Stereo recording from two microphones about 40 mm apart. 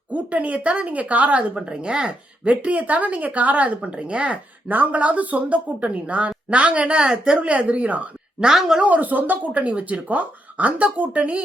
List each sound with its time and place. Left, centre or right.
0.1 s speech: right
1.6 s speech: right
2.5 s speech: right
3.8 s speech: right
7.4 s speech: right
8.8 s speech: right